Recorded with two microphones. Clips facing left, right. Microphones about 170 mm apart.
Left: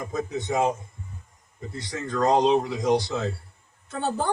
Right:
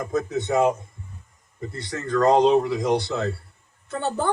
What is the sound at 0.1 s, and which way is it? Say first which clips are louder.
Speech: right 5 dB; 65° right (ahead or behind).